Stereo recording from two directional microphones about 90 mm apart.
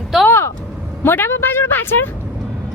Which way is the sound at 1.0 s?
25° left (ahead or behind).